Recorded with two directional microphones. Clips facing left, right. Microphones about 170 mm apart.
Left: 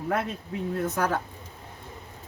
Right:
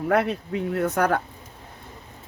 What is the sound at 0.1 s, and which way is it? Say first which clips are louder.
Speech: right 7 dB; 75° right (ahead or behind).